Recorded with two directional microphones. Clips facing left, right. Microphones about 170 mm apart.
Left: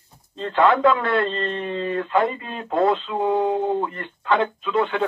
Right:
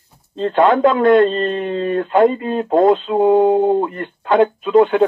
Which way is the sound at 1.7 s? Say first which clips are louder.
Right 5 dB; 35° right (ahead or behind).